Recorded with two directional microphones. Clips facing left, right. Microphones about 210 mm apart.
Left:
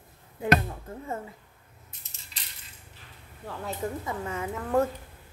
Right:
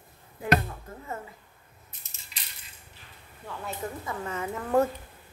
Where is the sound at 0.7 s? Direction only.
30° left (ahead or behind).